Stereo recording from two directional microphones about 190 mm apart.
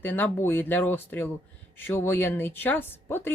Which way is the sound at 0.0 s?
10° left (ahead or behind).